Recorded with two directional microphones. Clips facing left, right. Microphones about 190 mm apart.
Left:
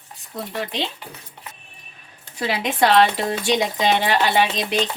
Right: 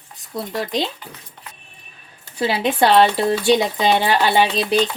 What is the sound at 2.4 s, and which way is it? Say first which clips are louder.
Speech: right 3 dB; 30° right (ahead or behind).